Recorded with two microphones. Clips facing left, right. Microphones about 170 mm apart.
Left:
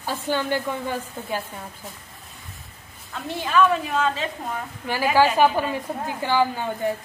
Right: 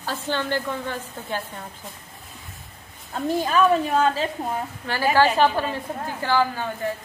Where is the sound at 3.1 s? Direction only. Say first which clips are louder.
Right 5 dB; 40° right (ahead or behind).